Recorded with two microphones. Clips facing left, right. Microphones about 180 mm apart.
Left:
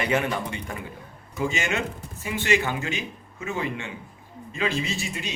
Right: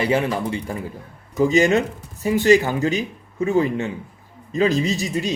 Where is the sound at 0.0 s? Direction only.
30° right (ahead or behind).